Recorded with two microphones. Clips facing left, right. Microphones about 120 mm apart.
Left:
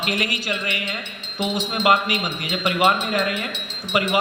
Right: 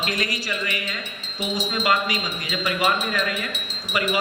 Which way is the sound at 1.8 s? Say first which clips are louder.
Left 4 dB; 25° left (ahead or behind).